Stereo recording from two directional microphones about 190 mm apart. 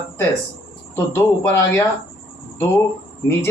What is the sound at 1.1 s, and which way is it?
Speech, 10° left (ahead or behind).